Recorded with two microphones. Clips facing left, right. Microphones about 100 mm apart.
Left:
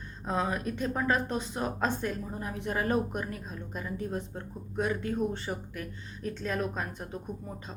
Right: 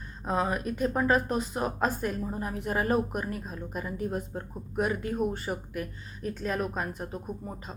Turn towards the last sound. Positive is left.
turn(degrees=-5)  # may be behind; listen again after turning